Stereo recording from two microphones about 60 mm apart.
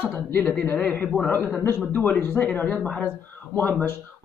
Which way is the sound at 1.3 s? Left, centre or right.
Left.